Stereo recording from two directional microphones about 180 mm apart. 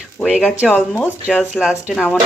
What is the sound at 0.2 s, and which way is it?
Speech, centre (ahead or behind).